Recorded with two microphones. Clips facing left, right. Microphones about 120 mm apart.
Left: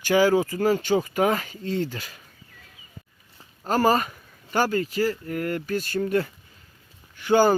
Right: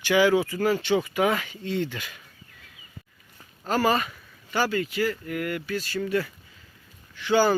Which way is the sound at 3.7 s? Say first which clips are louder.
Left 2 dB; 40° left (ahead or behind).